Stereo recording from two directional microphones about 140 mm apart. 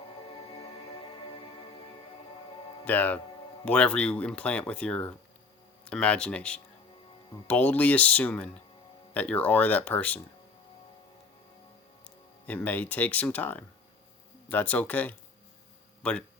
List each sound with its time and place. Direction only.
0.3 s music: 40° left (ahead or behind)
2.8 s speech: 10° left (ahead or behind)
12.0 s speech: 10° left (ahead or behind)